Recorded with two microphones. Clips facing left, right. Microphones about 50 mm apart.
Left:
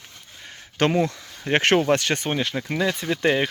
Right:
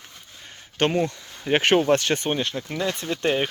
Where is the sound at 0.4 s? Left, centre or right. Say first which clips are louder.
Left 1 dB; left.